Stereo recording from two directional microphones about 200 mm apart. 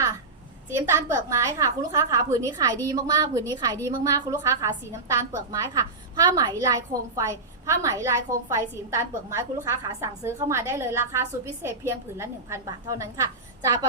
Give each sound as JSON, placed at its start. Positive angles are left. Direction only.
{"t": 0.8, "sound": "a woman's voice", "side_deg": -15}